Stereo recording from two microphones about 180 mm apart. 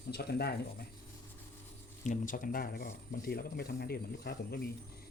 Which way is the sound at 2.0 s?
45° left (ahead or behind).